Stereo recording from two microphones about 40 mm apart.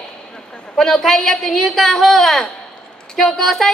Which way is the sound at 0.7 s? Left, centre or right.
Centre.